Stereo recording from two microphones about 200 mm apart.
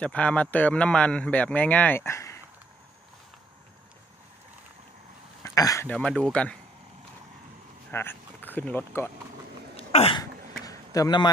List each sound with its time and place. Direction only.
0.0 s speech: 5° left (ahead or behind)
5.4 s a sound: 15° left (ahead or behind)
5.9 s speech: 5° left (ahead or behind)
7.9 s speech: 10° left (ahead or behind)
9.8 s throat clearing: 30° left (ahead or behind)
10.6 s a sound: 15° left (ahead or behind)